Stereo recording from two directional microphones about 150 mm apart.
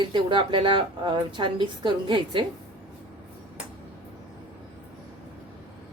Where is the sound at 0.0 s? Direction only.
30° right (ahead or behind).